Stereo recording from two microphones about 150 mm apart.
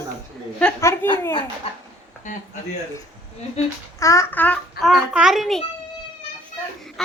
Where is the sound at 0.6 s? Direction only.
5° left (ahead or behind).